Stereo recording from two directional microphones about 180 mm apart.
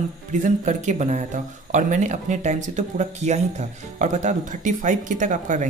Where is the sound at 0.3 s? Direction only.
45° right (ahead or behind).